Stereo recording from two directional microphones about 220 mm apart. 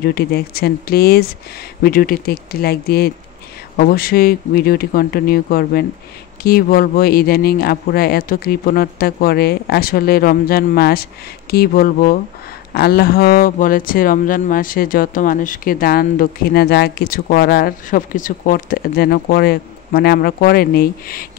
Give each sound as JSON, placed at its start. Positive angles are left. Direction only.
{"t": 0.0, "sound": "speech", "side_deg": 45}